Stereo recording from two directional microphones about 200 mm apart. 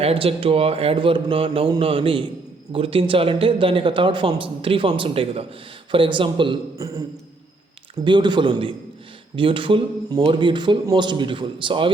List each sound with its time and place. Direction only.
0.0 s a man's voice: 30° right (ahead or behind)
8.0 s a man's voice: 20° right (ahead or behind)